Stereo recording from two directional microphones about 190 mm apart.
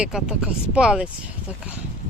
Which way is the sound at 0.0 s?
5° right (ahead or behind).